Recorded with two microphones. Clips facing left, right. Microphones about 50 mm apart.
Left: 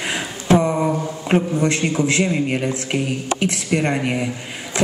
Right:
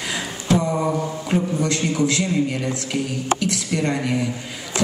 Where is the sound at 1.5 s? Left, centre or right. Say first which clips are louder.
Left 3 dB; left.